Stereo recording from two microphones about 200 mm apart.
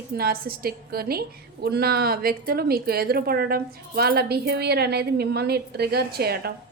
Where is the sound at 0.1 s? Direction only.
50° right (ahead or behind).